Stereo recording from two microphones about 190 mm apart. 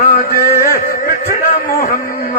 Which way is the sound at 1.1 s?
50° left (ahead or behind).